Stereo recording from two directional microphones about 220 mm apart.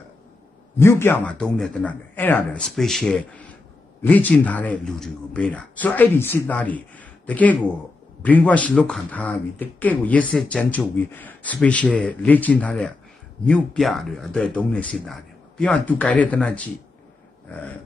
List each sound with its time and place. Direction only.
0.7 s speech: 10° left (ahead or behind)